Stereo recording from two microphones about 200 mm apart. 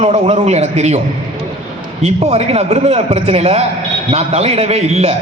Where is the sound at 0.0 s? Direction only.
35° right (ahead or behind).